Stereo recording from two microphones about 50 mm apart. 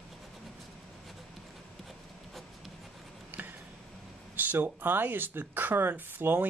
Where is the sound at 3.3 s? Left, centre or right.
Right.